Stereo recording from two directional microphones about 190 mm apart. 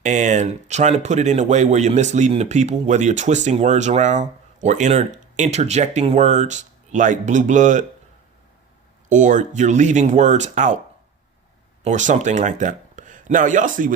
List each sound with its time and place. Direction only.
0.0 s speech: 40° right (ahead or behind)
9.0 s speech: 40° right (ahead or behind)
11.8 s speech: 40° right (ahead or behind)